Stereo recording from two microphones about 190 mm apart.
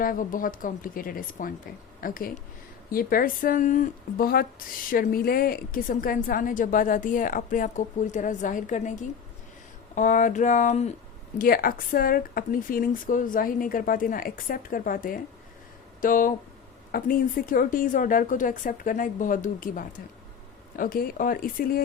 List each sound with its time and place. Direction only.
0.0 s a woman's voice: 45° left (ahead or behind)
11.3 s a woman's voice: 50° left (ahead or behind)